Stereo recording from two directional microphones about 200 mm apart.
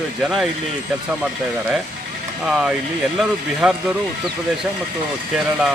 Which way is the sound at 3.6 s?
5° right (ahead or behind).